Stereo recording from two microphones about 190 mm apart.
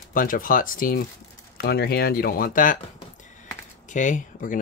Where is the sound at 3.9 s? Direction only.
40° left (ahead or behind).